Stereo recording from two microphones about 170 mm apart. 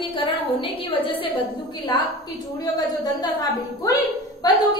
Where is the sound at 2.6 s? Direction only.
25° left (ahead or behind).